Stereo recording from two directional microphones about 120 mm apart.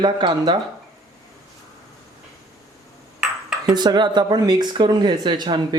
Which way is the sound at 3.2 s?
5° right (ahead or behind).